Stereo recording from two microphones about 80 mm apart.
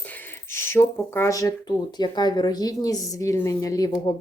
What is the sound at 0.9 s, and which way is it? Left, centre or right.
Speech, left.